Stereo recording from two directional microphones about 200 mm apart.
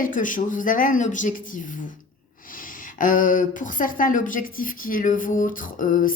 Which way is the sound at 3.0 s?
40° left (ahead or behind).